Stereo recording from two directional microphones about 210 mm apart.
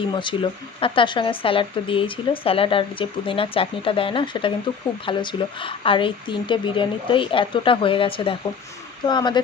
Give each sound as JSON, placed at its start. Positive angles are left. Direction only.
{"t": 0.1, "sound": "speech", "side_deg": 20}